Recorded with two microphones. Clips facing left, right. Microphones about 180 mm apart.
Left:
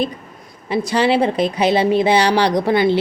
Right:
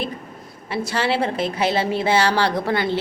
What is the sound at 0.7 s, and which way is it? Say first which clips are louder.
A woman's voice: left 6 dB; 15° left (ahead or behind).